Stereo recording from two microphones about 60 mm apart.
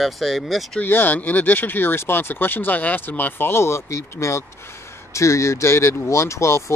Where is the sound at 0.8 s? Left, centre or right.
Left.